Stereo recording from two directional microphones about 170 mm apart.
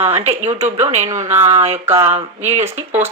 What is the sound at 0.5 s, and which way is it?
Speech, 15° right (ahead or behind).